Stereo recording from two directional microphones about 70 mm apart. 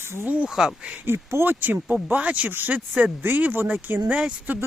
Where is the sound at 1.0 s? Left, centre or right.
Right.